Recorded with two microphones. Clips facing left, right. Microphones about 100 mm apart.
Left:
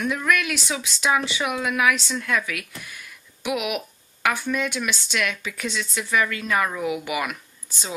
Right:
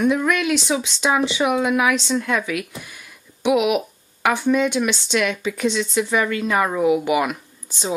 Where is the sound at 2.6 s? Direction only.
5° right (ahead or behind).